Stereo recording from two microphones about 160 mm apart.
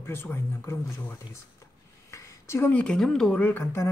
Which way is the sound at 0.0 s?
15° left (ahead or behind).